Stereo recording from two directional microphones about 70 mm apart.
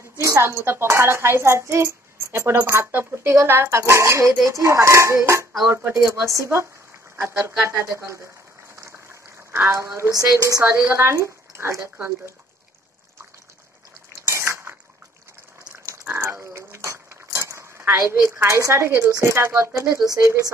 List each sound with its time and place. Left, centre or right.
0.2 s a child's voice: right
8.7 s a sound: right
9.5 s a child's voice: right
10.1 s speech: right
10.6 s a woman's voice: right
11.1 s speech: right
14.2 s a sound: right
16.1 s a sound: right
19.2 s a child's voice: right